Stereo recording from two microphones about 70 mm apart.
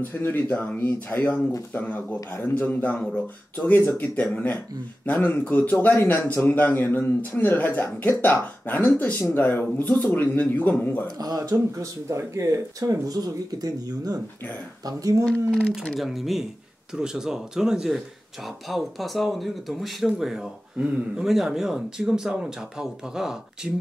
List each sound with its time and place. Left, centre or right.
0.0 s a man's voice: left
11.1 s speech: right
11.3 s speech: right
14.9 s speech: right
15.2 s speech: centre
16.0 s speech: centre